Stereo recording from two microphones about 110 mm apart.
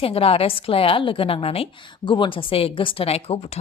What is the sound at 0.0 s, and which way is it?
A woman's voice, 60° left (ahead or behind).